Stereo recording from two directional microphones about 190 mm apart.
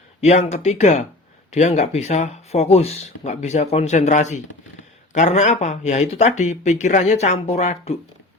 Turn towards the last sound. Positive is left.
turn(degrees=35)  # may be behind; listen again after turning